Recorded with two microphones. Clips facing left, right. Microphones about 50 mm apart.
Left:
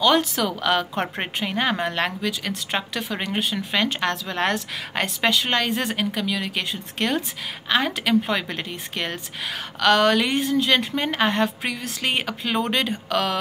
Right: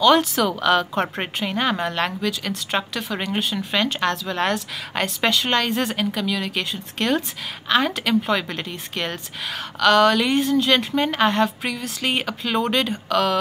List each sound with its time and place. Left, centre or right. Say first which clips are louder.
0.1 s a woman's voice: right 3 dB; centre; by 5.1 s left
5.2 s a woman's voice: right 1 dB; centre